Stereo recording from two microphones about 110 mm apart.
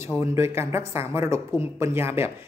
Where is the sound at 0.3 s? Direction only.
25° right (ahead or behind).